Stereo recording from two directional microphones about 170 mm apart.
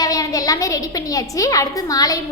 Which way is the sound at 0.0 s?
20° left (ahead or behind).